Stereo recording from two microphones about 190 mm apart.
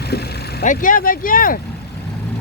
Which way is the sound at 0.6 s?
45° left (ahead or behind).